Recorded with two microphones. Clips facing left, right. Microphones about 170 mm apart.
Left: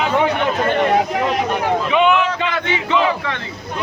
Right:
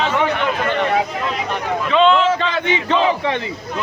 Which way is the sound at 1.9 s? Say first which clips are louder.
Right 4 dB; 15° left (ahead or behind).